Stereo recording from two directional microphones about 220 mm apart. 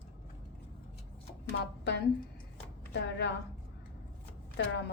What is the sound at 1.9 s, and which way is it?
A woman's voice, 50° left (ahead or behind).